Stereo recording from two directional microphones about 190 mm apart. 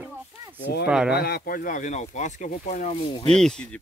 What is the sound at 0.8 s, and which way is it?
Speech, 5° right (ahead or behind).